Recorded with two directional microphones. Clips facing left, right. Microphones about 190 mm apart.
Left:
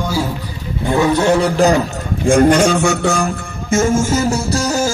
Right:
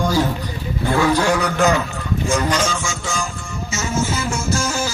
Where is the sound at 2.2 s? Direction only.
55° left (ahead or behind).